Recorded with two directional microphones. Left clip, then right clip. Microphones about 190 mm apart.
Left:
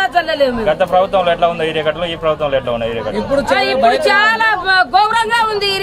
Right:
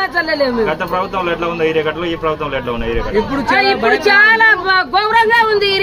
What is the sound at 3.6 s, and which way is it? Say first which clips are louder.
Speech: right 1 dB; 20° left (ahead or behind).